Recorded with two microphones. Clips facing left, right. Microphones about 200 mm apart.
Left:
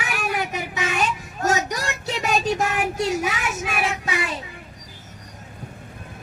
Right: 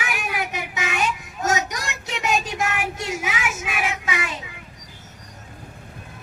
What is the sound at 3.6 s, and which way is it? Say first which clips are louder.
Child singing: left 2 dB; 35° left (ahead or behind).